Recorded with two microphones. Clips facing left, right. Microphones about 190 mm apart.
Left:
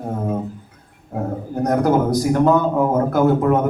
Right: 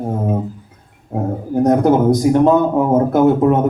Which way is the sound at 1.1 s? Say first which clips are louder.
Right 4 dB; 25° right (ahead or behind).